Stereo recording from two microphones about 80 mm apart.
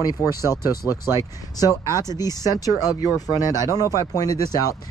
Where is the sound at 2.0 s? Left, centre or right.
Left.